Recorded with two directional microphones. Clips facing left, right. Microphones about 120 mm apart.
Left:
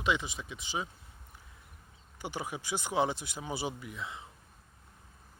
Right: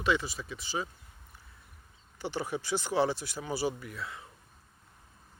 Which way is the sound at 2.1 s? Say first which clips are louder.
Right 4 dB; 15° left (ahead or behind).